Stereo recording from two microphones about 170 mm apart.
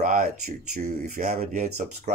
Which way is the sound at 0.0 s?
50° right (ahead or behind).